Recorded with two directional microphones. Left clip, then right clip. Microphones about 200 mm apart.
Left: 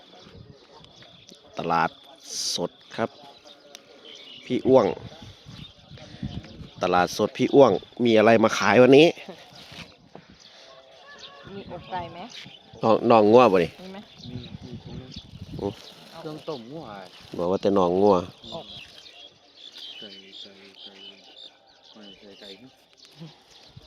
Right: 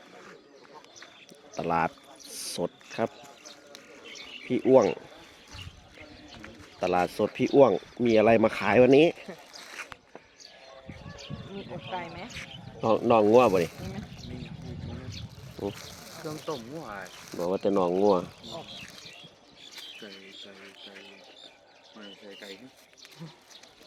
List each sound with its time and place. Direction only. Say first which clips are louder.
1.5 s speech: left 4 dB; 10° left (ahead or behind)
4.5 s speech: left 2 dB; 15° left (ahead or behind)
6.7 s speech: left 4 dB; 20° left (ahead or behind)
11.5 s speech: left 3 dB; 50° left (ahead or behind)
12.8 s speech: left 5 dB; 35° left (ahead or behind)
16.2 s speech: left 1 dB; 45° left (ahead or behind)
17.3 s speech: left 4 dB; 25° left (ahead or behind)
22.0 s speech: right 1 dB; 30° left (ahead or behind)